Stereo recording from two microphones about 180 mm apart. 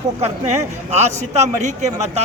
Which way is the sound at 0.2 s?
40° right (ahead or behind).